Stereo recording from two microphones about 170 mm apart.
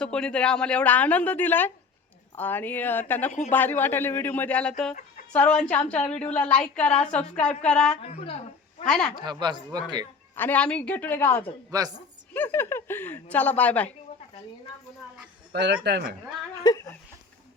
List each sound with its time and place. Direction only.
0.0 s a woman's voice: 5° left (ahead or behind)
8.0 s speech: 35° left (ahead or behind)
8.9 s a woman's voice: 5° left (ahead or behind)
9.1 s speech: 25° right (ahead or behind)
10.3 s a woman's voice: 10° left (ahead or behind)
11.7 s speech: 20° right (ahead or behind)
12.3 s a woman's voice: 10° left (ahead or behind)
15.5 s speech: 80° right
16.6 s speech: 20° left (ahead or behind)